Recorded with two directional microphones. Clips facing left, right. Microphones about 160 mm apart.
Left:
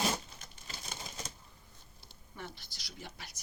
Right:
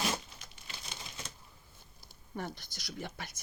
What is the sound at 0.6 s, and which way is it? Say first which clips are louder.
Typewriter: left 2 dB; 40° left (ahead or behind).